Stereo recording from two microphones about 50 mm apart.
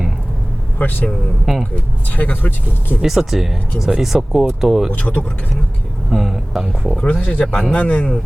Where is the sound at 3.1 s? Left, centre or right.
Centre.